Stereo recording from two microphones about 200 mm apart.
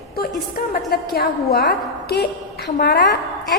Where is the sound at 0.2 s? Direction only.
50° left (ahead or behind).